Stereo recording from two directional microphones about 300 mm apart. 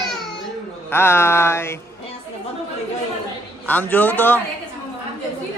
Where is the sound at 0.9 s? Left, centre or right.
Centre.